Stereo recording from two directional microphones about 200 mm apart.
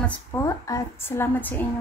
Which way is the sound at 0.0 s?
10° left (ahead or behind).